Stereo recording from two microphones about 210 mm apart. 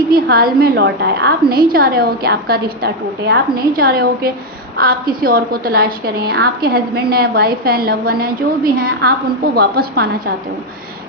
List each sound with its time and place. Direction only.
0.1 s a woman's voice: 45° right (ahead or behind)